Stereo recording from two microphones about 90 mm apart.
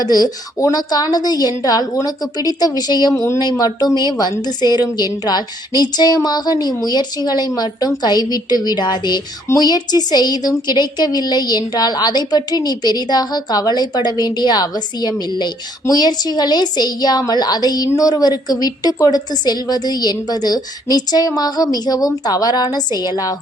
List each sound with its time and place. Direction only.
0.0 s a woman's voice: 45° left (ahead or behind)